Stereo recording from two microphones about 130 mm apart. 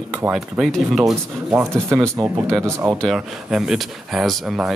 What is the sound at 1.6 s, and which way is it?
Speech, 20° right (ahead or behind).